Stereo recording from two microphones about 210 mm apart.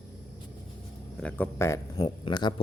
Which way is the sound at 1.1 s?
5° left (ahead or behind).